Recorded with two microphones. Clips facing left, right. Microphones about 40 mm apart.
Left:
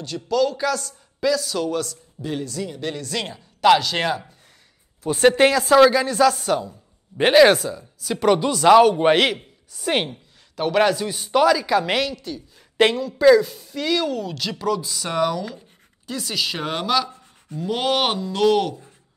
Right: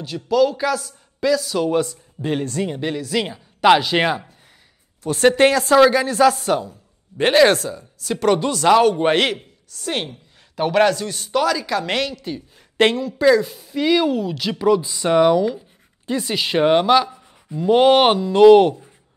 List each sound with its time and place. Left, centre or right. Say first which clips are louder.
0.0 s speech: right 4 dB; centre
1.7 s speech: right 6 dB; right
2.2 s speech: right 5 dB; right
2.8 s speech: right 3 dB; centre
5.0 s speech: right 1 dB; centre
6.7 s speech: right 1 dB; centre
9.8 s a woman's voice: left 3 dB; centre
10.5 s speech: right 2 dB; centre
12.2 s speech: right 3 dB; right
12.7 s speech: right 1 dB; centre; by 18.8 s right